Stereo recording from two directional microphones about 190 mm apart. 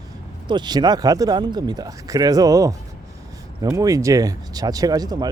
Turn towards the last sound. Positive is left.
turn(degrees=-20)  # may be behind; listen again after turning